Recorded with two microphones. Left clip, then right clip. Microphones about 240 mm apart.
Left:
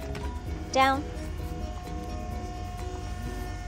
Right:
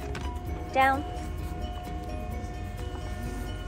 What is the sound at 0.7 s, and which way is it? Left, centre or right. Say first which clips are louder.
Speech: even; centre.